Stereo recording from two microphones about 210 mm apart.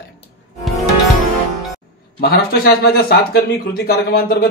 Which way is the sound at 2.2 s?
45° left (ahead or behind).